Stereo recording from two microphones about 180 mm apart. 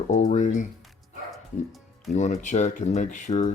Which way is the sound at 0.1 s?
40° left (ahead or behind).